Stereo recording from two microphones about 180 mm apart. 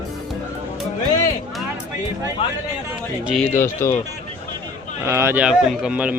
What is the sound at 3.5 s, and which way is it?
Speech, 15° left (ahead or behind).